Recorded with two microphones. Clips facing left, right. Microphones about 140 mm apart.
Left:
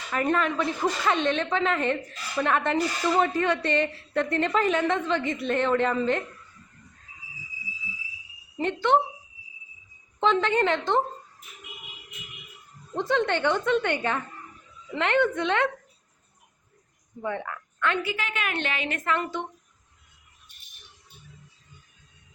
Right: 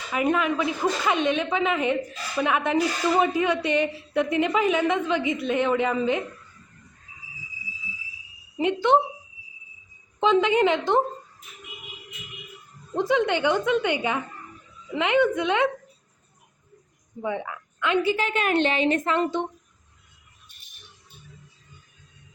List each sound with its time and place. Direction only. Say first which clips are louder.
0.1 s a woman's voice: right 2 dB; 10° right (ahead or behind)
8.5 s a woman's voice: right 3 dB; 15° right (ahead or behind)
10.2 s a woman's voice: right 3 dB; 10° right (ahead or behind)
12.9 s a woman's voice: right 3 dB; 10° right (ahead or behind)
17.2 s a woman's voice: right 2 dB; 10° right (ahead or behind)
18.0 s a woman's voice: right 7 dB; 30° right (ahead or behind)